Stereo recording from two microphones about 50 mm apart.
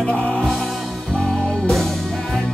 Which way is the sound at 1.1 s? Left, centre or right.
Centre.